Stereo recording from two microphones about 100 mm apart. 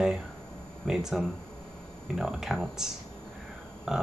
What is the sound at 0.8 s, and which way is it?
Speech, 5° right (ahead or behind).